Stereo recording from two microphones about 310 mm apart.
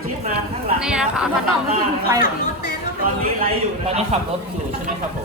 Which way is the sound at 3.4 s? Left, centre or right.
Right.